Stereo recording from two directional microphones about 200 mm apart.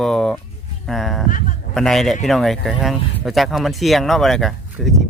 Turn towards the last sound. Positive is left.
turn(degrees=0)  # may be behind; listen again after turning